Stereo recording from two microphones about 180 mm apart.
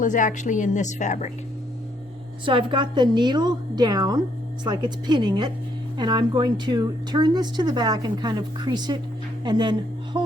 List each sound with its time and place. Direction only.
0.0 s a woman's voice: 45° left (ahead or behind)
2.4 s speech: 25° right (ahead or behind)